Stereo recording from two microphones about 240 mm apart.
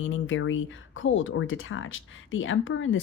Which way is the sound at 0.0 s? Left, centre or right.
Left.